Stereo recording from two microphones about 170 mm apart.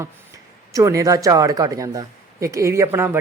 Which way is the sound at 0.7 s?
20° right (ahead or behind).